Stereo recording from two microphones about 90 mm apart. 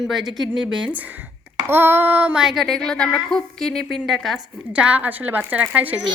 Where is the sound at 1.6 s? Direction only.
25° right (ahead or behind).